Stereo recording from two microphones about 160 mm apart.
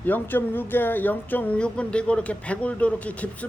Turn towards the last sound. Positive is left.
turn(degrees=10)  # may be behind; listen again after turning